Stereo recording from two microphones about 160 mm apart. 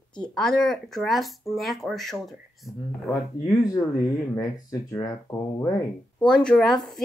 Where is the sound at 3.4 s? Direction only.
20° left (ahead or behind).